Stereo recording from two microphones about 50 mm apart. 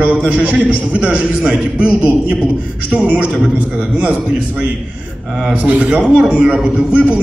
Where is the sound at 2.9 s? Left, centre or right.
Right.